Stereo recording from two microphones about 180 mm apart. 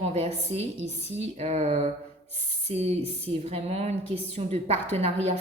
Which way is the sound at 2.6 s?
35° right (ahead or behind).